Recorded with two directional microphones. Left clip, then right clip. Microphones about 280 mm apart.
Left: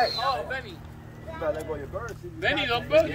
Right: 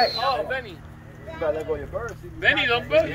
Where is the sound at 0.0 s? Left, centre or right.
Right.